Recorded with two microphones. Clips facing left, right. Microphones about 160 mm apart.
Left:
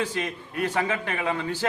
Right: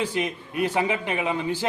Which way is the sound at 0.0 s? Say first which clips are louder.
Right 2 dB; 15° right (ahead or behind).